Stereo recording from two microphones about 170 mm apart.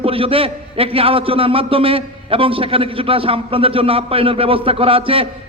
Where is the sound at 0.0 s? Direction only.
35° right (ahead or behind).